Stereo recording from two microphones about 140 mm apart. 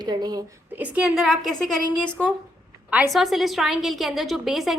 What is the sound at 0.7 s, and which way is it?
A woman's voice, 10° right (ahead or behind).